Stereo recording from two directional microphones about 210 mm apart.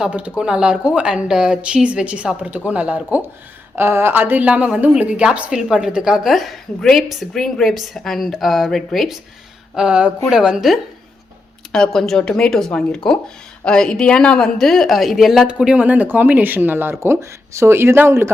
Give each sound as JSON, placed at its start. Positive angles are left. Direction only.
{"t": 0.0, "sound": "a woman's voice", "side_deg": -5}